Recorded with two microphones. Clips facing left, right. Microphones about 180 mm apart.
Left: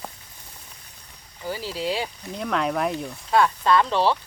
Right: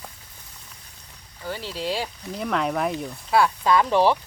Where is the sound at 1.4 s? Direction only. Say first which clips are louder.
Left 1 dB; 5° left (ahead or behind); by 4.2 s 15° right (ahead or behind).